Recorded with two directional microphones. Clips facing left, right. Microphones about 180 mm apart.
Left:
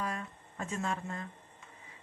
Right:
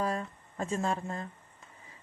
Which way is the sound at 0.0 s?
35° right (ahead or behind).